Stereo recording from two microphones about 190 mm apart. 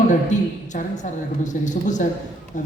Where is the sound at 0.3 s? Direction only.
40° left (ahead or behind).